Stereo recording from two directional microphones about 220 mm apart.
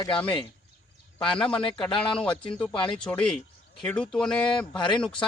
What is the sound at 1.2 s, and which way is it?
Speech, 5° left (ahead or behind).